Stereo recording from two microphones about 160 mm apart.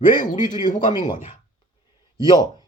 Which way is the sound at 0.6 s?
55° left (ahead or behind).